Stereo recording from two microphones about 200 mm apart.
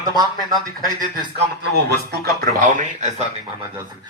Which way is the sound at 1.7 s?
55° right (ahead or behind).